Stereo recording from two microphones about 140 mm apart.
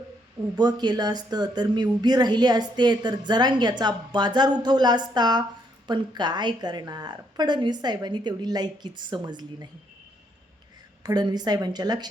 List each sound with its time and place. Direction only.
0.5 s speech: 30° right (ahead or behind)
11.0 s a woman's voice: 30° right (ahead or behind)